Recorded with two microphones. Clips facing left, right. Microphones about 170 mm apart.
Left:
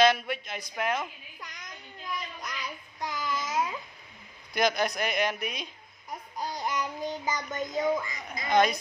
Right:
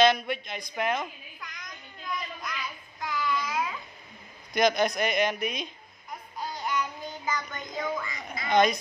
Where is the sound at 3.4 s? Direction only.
25° left (ahead or behind).